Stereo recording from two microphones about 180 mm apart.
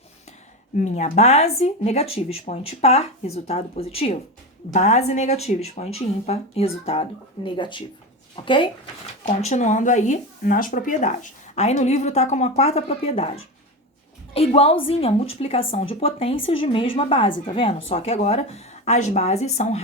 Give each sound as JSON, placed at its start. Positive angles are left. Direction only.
{"t": 0.8, "sound": "speech", "side_deg": 40}
{"t": 9.2, "sound": "speech", "side_deg": 40}
{"t": 14.3, "sound": "speech", "side_deg": 35}